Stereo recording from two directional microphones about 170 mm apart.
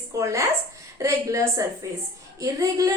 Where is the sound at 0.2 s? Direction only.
15° right (ahead or behind).